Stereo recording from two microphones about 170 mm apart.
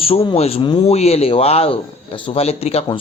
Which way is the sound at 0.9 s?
40° left (ahead or behind).